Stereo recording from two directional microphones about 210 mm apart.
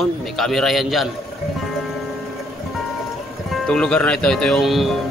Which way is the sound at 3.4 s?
Centre (ahead or behind).